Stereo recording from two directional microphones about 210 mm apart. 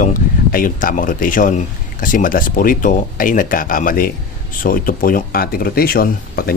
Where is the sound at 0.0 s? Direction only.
40° left (ahead or behind).